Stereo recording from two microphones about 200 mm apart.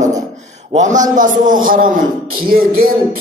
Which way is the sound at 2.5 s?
50° right (ahead or behind).